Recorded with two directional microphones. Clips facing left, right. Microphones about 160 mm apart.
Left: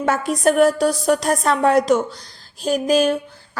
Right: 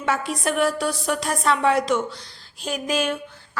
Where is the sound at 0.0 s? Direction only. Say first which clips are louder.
Left 6 dB; 45° left (ahead or behind).